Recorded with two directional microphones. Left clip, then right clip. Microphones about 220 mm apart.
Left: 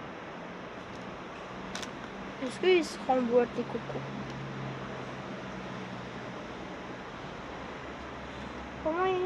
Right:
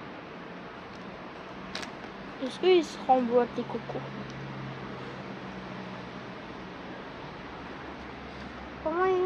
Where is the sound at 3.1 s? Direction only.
20° right (ahead or behind).